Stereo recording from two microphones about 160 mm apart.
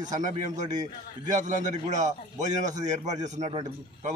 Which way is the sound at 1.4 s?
50° right (ahead or behind).